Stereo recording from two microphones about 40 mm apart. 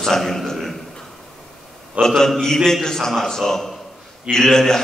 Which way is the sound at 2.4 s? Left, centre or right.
Centre.